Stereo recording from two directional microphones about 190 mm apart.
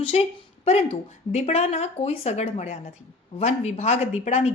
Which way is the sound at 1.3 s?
35° left (ahead or behind).